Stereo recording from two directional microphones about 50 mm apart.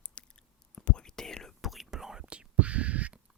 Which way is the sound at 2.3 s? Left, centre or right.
Right.